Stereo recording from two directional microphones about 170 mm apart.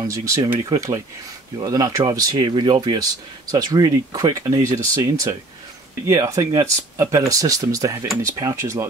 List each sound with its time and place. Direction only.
0.0 s speech: 20° right (ahead or behind)